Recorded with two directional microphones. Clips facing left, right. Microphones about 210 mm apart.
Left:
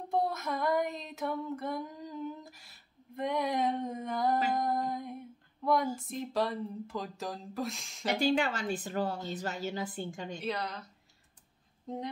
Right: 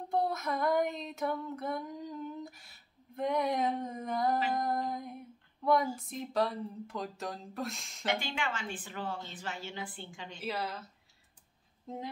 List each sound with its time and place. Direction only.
0.1 s female singing: centre (ahead or behind)
5.9 s speech: centre (ahead or behind)
8.1 s a woman's voice: 35° left (ahead or behind)
10.4 s speech: 5° right (ahead or behind)